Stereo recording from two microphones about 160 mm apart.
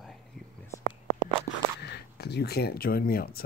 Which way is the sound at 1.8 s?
85° left.